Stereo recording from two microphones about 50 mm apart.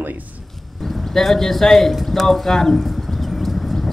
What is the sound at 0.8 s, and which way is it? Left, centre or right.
Speech, centre.